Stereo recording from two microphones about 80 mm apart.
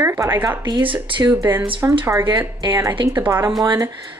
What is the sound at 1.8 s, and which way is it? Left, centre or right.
Speech, right.